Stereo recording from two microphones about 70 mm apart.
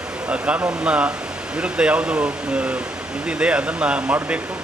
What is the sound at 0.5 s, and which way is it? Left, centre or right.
Speech, centre.